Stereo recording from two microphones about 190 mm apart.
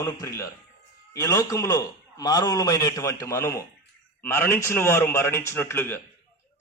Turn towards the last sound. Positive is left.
turn(degrees=10)  # may be behind; listen again after turning